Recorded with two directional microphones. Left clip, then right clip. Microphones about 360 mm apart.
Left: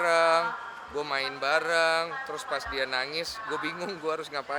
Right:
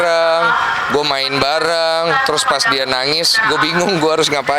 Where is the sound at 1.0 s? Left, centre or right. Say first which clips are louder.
Right 14 dB; right.